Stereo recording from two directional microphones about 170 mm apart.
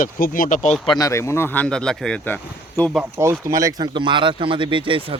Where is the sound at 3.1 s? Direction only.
15° right (ahead or behind).